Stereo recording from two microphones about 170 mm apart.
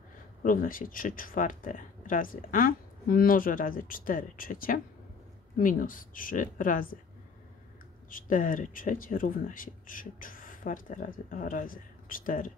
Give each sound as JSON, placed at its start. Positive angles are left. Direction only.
{"t": 0.4, "sound": "speech", "side_deg": 55}
{"t": 8.1, "sound": "speech", "side_deg": 50}